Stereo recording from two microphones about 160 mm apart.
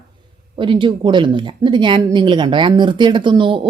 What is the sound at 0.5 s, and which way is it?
A woman's voice, 30° right (ahead or behind).